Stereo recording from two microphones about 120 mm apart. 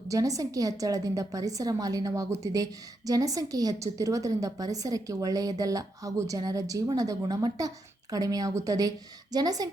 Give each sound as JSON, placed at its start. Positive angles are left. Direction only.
{"t": 0.1, "sound": "a woman's voice", "side_deg": -30}